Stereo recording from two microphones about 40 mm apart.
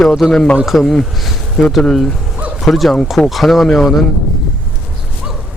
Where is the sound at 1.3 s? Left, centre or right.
Centre.